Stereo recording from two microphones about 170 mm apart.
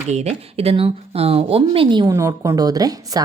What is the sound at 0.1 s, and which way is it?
Speech, 40° right (ahead or behind).